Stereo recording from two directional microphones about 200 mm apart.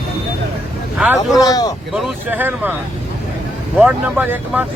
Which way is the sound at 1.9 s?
5° right (ahead or behind).